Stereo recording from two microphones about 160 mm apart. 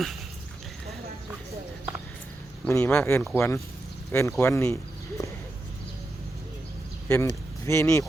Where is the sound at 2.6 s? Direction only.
15° left (ahead or behind).